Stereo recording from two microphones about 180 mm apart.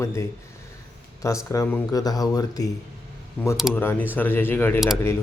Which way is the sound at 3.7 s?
10° left (ahead or behind).